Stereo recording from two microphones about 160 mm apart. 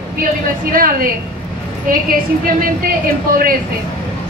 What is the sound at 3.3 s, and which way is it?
Speech, 65° right (ahead or behind).